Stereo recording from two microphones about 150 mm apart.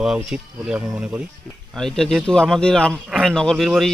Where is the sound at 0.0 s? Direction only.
5° right (ahead or behind).